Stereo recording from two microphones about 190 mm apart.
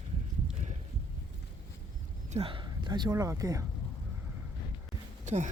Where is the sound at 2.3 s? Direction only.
25° right (ahead or behind).